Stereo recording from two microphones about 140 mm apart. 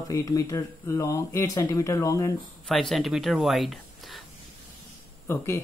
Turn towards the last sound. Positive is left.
turn(degrees=20)  # may be behind; listen again after turning